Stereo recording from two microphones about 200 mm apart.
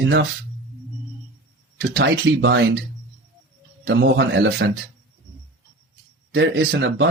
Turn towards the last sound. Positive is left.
turn(degrees=-55)  # may be behind; listen again after turning